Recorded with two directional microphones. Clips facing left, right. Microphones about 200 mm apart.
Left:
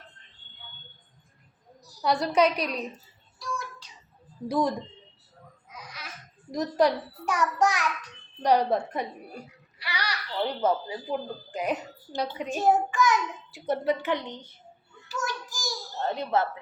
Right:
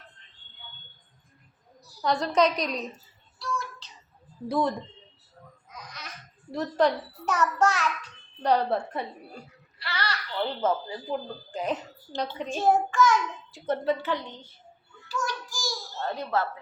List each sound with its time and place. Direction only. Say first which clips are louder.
2.0 s a woman's voice: even; 10° left (ahead or behind)
3.3 s child singing: right 2 dB; 15° left (ahead or behind)
4.4 s a woman's voice: even; 10° left (ahead or behind)
5.7 s a child's voice: even; 10° left (ahead or behind)
15.3 s a sound: right 1 dB; 20° left (ahead or behind)